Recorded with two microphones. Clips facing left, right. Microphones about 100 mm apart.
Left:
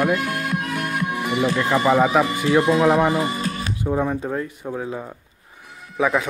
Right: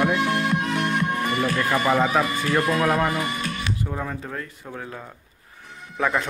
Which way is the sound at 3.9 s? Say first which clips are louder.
Left 8 dB; 20° left (ahead or behind).